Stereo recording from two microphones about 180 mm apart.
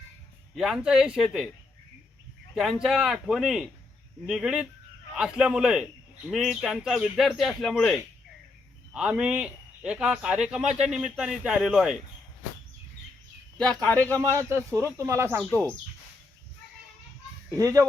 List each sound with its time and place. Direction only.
0.5 s speech: centre (ahead or behind)
2.8 s speech: 5° right (ahead or behind)
13.8 s speech: 10° left (ahead or behind)
14.2 s speech: 15° right (ahead or behind)
17.5 s speech: 20° right (ahead or behind)